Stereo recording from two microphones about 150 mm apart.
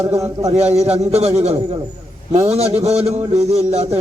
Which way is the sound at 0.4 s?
45° right (ahead or behind).